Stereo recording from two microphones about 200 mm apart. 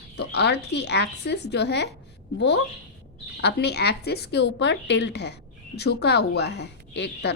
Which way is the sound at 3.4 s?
55° left (ahead or behind).